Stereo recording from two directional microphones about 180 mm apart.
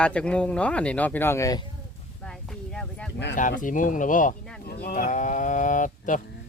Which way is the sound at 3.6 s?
45° left (ahead or behind).